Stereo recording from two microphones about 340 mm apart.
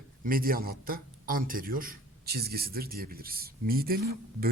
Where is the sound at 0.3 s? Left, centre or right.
Right.